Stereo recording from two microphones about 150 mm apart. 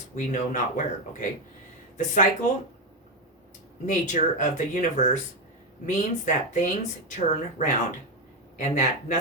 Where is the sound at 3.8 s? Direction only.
55° left (ahead or behind).